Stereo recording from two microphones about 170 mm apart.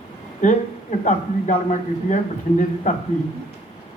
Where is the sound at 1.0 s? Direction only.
50° left (ahead or behind).